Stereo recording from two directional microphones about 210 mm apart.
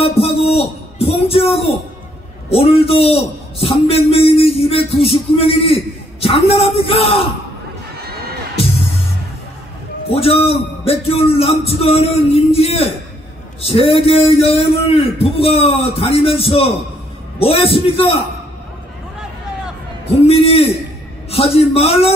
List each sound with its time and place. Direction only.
0.0 s music: 25° left (ahead or behind)
2.5 s a man's voice: 25° left (ahead or behind)
10.0 s a man's voice: 30° left (ahead or behind)
20.2 s a man's voice: 25° left (ahead or behind)